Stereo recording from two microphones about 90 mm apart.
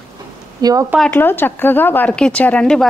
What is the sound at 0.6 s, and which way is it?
Speech, 45° right (ahead or behind).